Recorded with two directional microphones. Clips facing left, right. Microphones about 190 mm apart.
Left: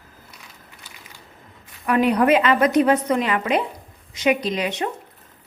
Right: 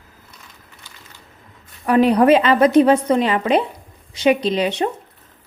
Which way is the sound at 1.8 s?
30° right (ahead or behind).